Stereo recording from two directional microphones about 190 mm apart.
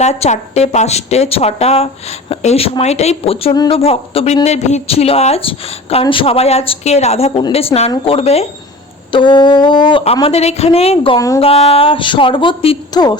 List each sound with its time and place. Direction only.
0.0 s a woman's voice: 35° left (ahead or behind)